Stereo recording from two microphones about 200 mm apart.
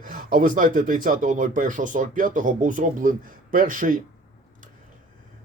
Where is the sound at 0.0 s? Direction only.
40° right (ahead or behind).